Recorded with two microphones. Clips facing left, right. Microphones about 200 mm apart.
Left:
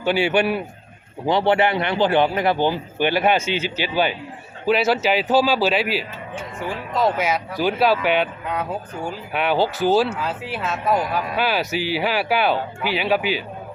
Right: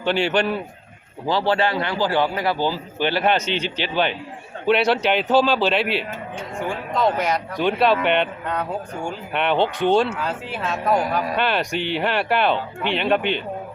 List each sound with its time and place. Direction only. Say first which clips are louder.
0.0 s speech: left 1 dB; 10° left (ahead or behind)